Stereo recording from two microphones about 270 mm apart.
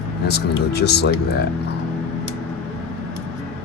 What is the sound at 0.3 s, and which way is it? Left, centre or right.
Speech, left.